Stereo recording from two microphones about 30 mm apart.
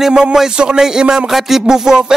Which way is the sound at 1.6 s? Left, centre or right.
Right.